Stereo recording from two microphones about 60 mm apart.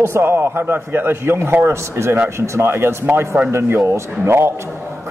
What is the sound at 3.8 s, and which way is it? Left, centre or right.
Speech, right.